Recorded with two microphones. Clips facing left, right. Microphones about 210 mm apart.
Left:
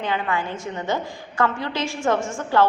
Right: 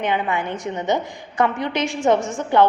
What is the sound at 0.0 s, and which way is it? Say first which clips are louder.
A woman's voice: right 3 dB; 20° right (ahead or behind).